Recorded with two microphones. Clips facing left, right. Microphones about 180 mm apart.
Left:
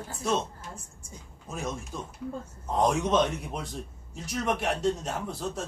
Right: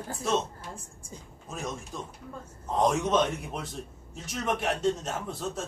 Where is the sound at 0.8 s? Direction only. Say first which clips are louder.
Right 2 dB; 30° right (ahead or behind).